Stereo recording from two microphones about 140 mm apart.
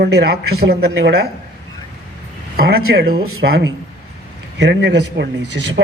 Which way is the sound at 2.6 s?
90° right.